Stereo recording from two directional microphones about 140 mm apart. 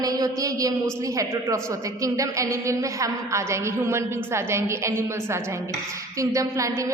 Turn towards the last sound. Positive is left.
turn(degrees=-25)  # may be behind; listen again after turning